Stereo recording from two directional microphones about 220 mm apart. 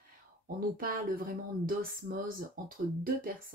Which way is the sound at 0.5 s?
40° right (ahead or behind).